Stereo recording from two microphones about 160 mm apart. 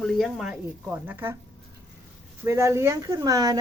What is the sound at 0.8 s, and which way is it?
Speech, 10° right (ahead or behind).